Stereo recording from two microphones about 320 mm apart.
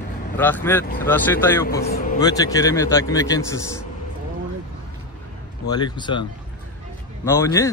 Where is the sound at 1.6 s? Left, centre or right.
Left.